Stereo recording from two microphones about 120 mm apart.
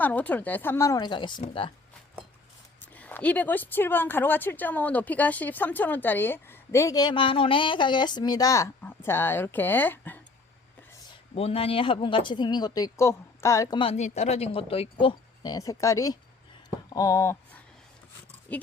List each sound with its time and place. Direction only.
0.0 s speech: 10° left (ahead or behind); by 1.3 s 40° left (ahead or behind)
2.8 s speech: 15° left (ahead or behind); by 8.7 s 30° left (ahead or behind)
8.8 s speech: 20° left (ahead or behind)
11.3 s speech: 55° left (ahead or behind); by 13.7 s 25° left (ahead or behind)
13.9 s a woman's voice: 70° left (ahead or behind); by 16.1 s 25° left (ahead or behind)
16.6 s a sound: 30° left (ahead or behind)
18.5 s speech: 15° left (ahead or behind)